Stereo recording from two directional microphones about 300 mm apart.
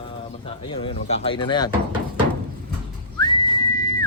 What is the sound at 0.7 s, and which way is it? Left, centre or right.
Speech, centre.